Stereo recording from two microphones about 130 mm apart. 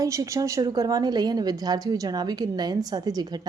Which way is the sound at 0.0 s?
25° right (ahead or behind).